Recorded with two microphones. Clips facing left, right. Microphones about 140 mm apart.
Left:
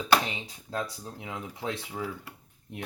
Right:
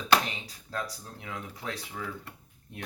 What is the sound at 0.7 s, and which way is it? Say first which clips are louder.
Speech: left 2 dB; 25° left (ahead or behind).